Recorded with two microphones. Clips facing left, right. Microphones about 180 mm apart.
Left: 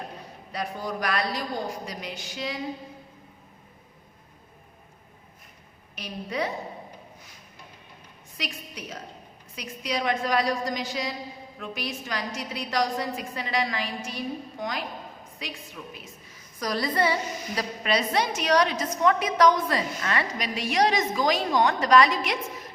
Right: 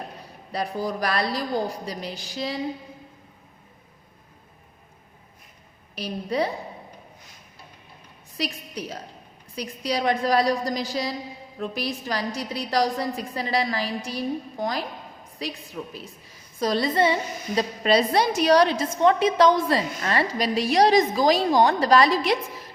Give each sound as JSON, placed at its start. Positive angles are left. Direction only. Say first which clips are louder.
{"t": 0.5, "sound": "a woman's voice", "louder": "right 4 dB", "side_deg": -35}
{"t": 6.0, "sound": "a woman's voice", "louder": "right 5 dB", "side_deg": -35}
{"t": 8.4, "sound": "a woman's voice", "louder": "right 6 dB", "side_deg": -35}